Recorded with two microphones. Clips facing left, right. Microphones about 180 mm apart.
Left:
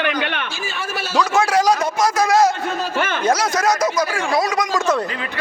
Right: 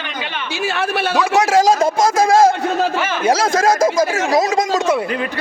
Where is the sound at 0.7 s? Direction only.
65° right (ahead or behind).